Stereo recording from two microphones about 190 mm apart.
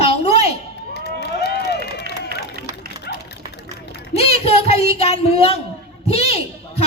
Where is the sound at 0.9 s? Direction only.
60° left (ahead or behind).